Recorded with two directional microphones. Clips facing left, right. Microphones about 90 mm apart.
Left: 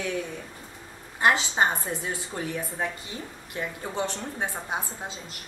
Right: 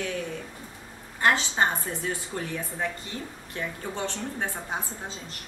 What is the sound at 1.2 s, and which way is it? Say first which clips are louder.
A woman's voice: left 1 dB; 15° left (ahead or behind).